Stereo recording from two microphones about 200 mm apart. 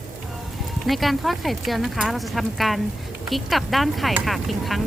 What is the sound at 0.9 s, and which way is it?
Speech, centre (ahead or behind).